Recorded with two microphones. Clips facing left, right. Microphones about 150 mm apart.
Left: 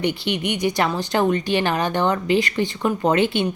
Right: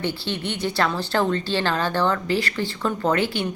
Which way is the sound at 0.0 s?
15° left (ahead or behind).